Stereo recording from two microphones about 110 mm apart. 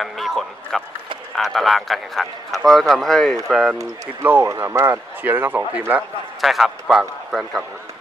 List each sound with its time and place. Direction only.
0.0 s a man's voice: centre (ahead or behind)
4.2 s speech: 20° right (ahead or behind)
6.4 s a man's voice: centre (ahead or behind)